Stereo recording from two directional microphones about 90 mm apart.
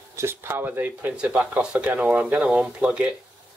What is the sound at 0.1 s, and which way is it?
Speech, 25° right (ahead or behind).